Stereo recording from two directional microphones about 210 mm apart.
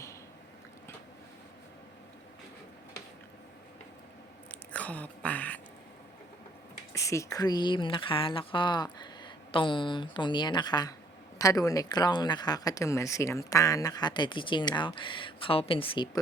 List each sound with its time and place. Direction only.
4.7 s speech: 5° left (ahead or behind)
6.9 s speech: 15° left (ahead or behind)